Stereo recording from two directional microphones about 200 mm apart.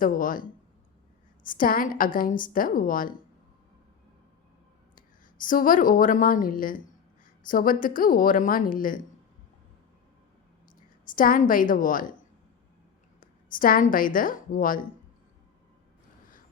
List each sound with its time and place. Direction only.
0.0 s a woman's voice: 45° left (ahead or behind)
1.5 s a woman's voice: 45° left (ahead or behind)
4.9 s a woman's voice: 40° left (ahead or behind)
10.8 s a woman's voice: 45° left (ahead or behind)
13.1 s a woman's voice: 45° left (ahead or behind)